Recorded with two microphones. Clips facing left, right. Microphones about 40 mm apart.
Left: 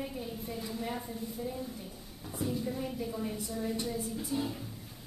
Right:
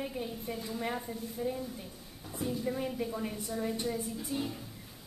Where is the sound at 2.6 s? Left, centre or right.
Right.